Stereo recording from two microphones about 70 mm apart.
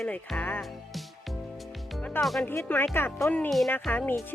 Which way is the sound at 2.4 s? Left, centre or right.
Left.